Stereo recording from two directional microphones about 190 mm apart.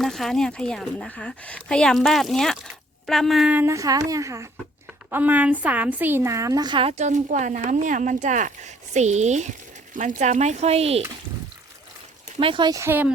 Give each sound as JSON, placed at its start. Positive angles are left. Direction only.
{"t": 0.0, "sound": "a woman's voice", "side_deg": 0}
{"t": 12.4, "sound": "speech", "side_deg": -25}